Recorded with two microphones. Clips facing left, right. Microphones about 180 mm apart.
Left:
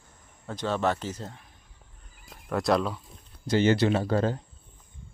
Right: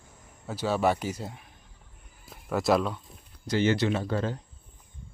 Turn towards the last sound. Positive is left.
turn(degrees=40)  # may be behind; listen again after turning